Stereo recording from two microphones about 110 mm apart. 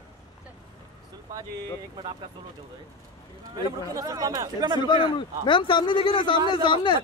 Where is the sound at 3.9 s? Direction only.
30° right (ahead or behind).